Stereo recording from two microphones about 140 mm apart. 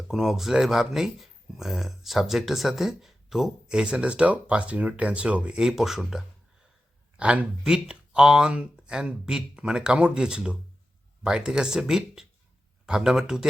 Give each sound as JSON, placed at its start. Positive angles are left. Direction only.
{"t": 0.1, "sound": "speech", "side_deg": 0}